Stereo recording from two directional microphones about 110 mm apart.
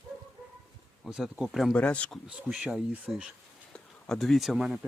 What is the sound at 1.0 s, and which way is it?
Speech, 5° right (ahead or behind).